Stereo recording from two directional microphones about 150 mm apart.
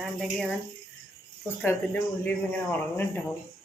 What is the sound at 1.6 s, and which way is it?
Speech, 10° left (ahead or behind).